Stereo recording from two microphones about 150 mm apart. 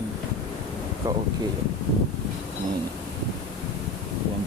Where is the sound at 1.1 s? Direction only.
20° right (ahead or behind).